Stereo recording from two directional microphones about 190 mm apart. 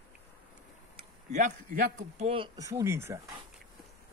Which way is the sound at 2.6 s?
15° right (ahead or behind).